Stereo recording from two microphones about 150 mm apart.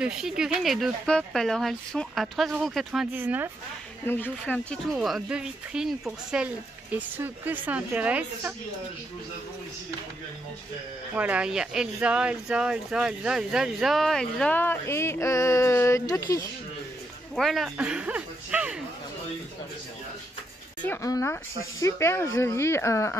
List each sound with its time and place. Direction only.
0.0 s speech: 5° right (ahead or behind)
3.2 s a woman's voice: 15° right (ahead or behind)
4.0 s speech: 15° left (ahead or behind)
4.9 s a woman's voice: 5° right (ahead or behind)
11.1 s speech: 10° right (ahead or behind); by 16.4 s 20° left (ahead or behind)
17.4 s a woman's voice: centre (ahead or behind)
20.8 s speech: 20° left (ahead or behind)